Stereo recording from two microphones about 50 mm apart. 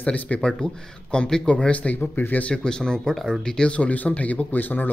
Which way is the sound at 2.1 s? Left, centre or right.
Left.